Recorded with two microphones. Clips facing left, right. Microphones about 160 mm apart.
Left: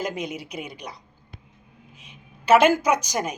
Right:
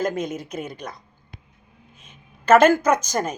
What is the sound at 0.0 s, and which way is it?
Speech, 50° right (ahead or behind).